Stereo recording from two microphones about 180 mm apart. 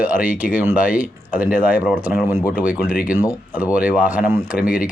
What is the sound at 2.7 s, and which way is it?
Speech, 50° left (ahead or behind).